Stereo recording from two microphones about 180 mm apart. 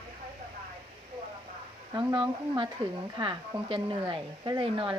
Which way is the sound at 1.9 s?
25° right (ahead or behind).